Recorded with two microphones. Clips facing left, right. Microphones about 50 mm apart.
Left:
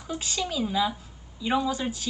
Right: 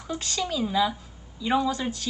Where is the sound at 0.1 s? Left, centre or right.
Centre.